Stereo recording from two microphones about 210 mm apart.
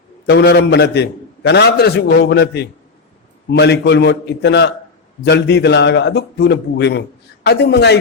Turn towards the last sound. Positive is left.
turn(degrees=55)  # may be behind; listen again after turning